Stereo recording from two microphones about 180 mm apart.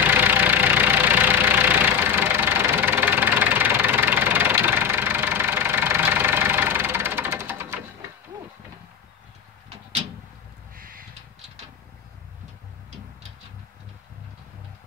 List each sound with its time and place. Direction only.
0.0 s vehicle: 10° right (ahead or behind)
10.8 s crow: 50° right (ahead or behind)